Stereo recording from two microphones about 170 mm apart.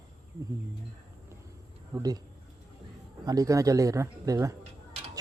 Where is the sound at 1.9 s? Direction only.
20° right (ahead or behind).